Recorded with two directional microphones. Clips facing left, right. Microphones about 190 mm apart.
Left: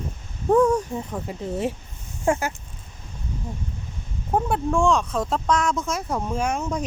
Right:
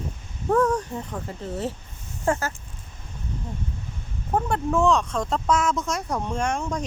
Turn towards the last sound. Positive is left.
turn(degrees=5)  # may be behind; listen again after turning